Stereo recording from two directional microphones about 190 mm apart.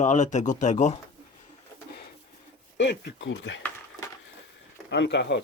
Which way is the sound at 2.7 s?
65° left (ahead or behind).